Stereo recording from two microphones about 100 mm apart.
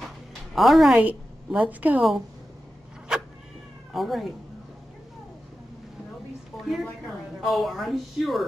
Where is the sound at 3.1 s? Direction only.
10° right (ahead or behind).